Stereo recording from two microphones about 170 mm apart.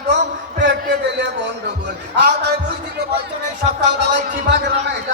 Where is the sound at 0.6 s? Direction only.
90° right.